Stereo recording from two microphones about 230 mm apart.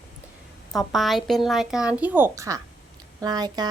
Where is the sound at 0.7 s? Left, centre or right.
Centre.